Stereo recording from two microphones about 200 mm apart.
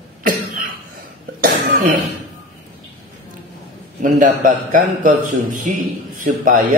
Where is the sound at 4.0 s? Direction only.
40° right (ahead or behind).